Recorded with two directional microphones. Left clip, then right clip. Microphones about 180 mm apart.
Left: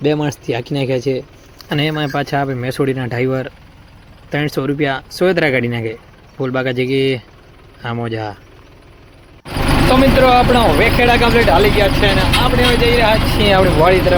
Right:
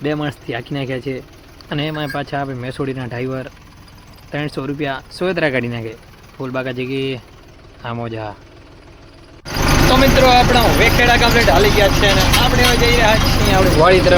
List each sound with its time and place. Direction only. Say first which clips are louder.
0.0 s speech: left 4 dB; 15° left (ahead or behind)
9.9 s speech: left 1 dB; 20° left (ahead or behind)
13.7 s speech: right 1 dB; centre (ahead or behind)